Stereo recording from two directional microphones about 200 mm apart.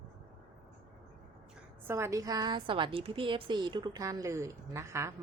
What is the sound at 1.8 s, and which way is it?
A woman's voice, 10° right (ahead or behind).